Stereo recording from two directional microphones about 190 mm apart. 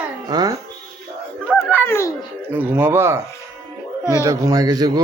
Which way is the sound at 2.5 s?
10° right (ahead or behind).